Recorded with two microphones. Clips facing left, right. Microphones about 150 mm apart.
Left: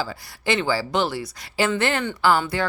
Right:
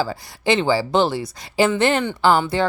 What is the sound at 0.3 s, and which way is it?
Speech, 20° right (ahead or behind).